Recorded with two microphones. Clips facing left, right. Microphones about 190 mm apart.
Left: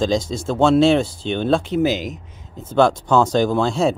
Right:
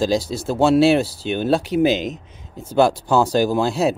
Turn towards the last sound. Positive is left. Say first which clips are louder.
# even
turn(degrees=-5)  # may be behind; listen again after turning